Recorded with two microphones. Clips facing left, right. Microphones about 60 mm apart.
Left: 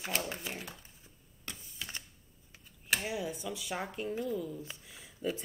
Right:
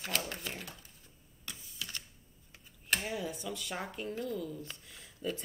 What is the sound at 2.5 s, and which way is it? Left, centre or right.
Speech, centre.